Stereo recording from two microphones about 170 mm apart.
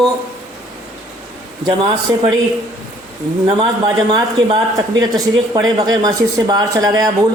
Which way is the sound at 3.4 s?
25° right (ahead or behind).